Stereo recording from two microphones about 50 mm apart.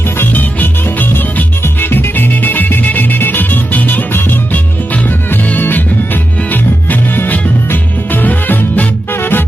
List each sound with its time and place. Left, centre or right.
0.2 s music: left
5.5 s music: left
7.2 s music: left